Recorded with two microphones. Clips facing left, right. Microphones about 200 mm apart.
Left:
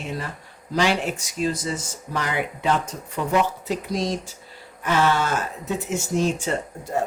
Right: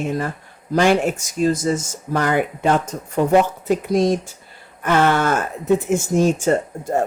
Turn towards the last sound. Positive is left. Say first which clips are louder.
# right 5 dB
turn(degrees=-50)  # may be behind; listen again after turning